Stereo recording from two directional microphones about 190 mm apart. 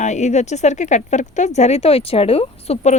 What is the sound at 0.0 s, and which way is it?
Speech, 40° left (ahead or behind).